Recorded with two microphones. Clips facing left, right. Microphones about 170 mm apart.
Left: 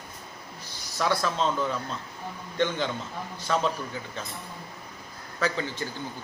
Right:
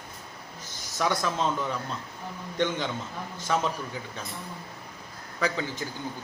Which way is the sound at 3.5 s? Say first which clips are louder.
Even; 10° right (ahead or behind).